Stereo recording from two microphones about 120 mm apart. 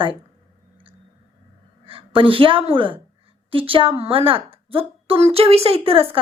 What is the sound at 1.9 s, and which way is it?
A woman's voice, 45° right (ahead or behind).